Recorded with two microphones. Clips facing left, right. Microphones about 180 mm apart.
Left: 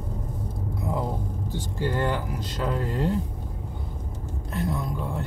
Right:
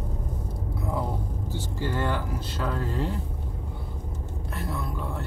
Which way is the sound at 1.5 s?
15° left (ahead or behind).